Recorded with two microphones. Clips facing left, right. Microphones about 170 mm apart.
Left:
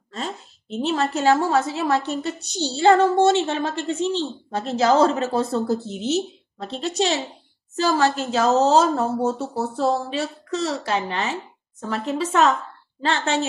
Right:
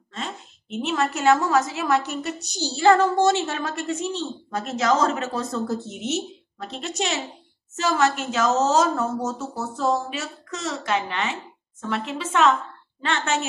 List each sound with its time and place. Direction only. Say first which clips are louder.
0.1 s a woman's voice: left 3 dB; 35° left (ahead or behind)